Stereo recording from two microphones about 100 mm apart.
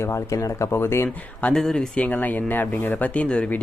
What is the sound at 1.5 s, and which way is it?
Speech, 5° left (ahead or behind).